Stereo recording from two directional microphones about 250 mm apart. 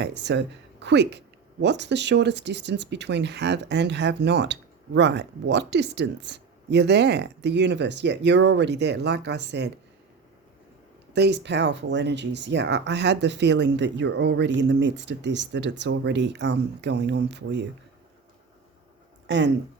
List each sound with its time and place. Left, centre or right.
0.0 s speech: right
11.1 s speech: right